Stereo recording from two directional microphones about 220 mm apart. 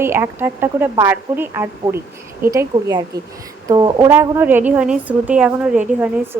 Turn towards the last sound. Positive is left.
turn(degrees=-5)  # may be behind; listen again after turning